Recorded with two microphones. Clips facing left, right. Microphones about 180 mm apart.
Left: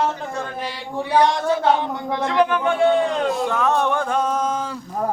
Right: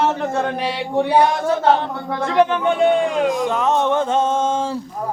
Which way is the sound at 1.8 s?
20° left (ahead or behind).